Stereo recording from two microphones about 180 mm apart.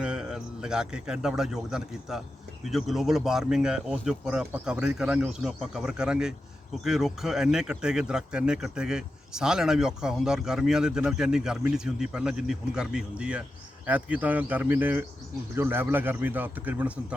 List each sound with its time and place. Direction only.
0.0 s speech: 5° right (ahead or behind)